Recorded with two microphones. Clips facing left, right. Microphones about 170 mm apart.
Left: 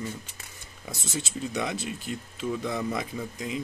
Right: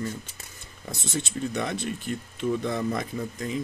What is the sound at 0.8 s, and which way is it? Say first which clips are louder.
Speech: right 3 dB; 5° left (ahead or behind).